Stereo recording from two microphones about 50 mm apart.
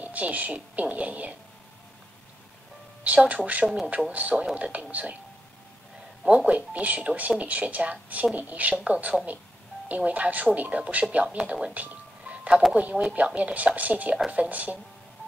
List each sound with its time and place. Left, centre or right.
0.0 s speech: right
3.0 s speech: right
3.6 s speech: centre
4.1 s speech: right
6.2 s speech: right
11.7 s music: right
13.1 s speech: right